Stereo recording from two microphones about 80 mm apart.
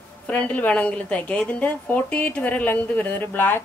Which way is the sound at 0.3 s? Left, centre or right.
Centre.